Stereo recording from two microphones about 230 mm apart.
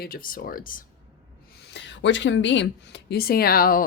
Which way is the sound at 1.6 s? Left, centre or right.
Left.